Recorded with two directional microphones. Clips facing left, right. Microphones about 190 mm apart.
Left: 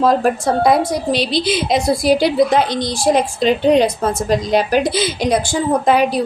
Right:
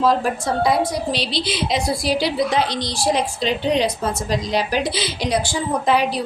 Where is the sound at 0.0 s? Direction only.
55° left (ahead or behind).